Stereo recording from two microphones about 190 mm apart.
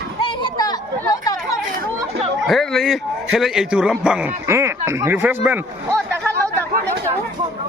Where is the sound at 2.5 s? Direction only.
Centre (ahead or behind).